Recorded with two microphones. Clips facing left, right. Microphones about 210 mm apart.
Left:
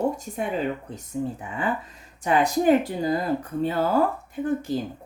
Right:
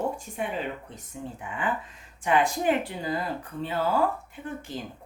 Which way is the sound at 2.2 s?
40° left (ahead or behind).